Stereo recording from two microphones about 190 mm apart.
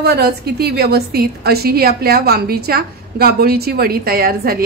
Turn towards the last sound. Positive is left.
turn(degrees=-50)  # may be behind; listen again after turning